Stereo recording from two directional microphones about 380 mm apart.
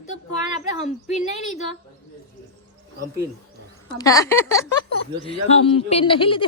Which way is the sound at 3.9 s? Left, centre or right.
Centre.